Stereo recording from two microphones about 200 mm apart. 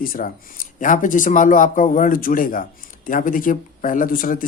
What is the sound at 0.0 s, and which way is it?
Speech, 45° left (ahead or behind).